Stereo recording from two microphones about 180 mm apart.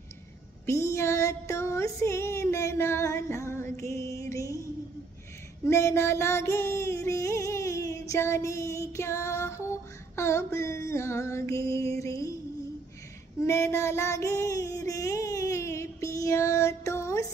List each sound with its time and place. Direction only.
0.7 s music: 15° left (ahead or behind)
5.7 s music: 15° left (ahead or behind)
13.4 s child singing: 15° left (ahead or behind)